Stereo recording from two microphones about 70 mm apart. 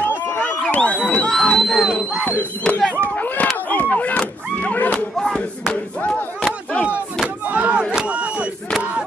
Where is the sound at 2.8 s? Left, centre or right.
Left.